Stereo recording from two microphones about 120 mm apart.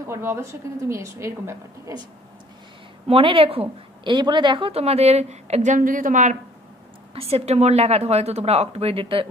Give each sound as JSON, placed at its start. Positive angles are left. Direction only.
{"t": 0.0, "sound": "a woman's voice", "side_deg": -20}
{"t": 3.1, "sound": "speech", "side_deg": -50}
{"t": 3.6, "sound": "a woman's voice", "side_deg": -40}
{"t": 7.2, "sound": "a woman's voice", "side_deg": -55}